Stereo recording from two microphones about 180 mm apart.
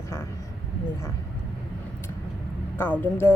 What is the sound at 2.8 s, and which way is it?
Speech, 10° left (ahead or behind).